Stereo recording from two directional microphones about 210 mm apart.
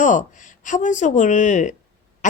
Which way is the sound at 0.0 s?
35° left (ahead or behind).